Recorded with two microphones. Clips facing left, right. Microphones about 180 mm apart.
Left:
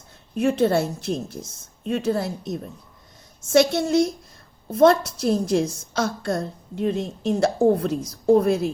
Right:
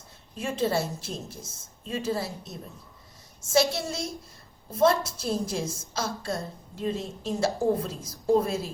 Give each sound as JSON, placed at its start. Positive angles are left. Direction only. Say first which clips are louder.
{"t": 0.3, "sound": "a woman's voice", "louder": "left 8 dB", "side_deg": 70}
{"t": 3.4, "sound": "a woman's voice", "louder": "left 6 dB", "side_deg": 65}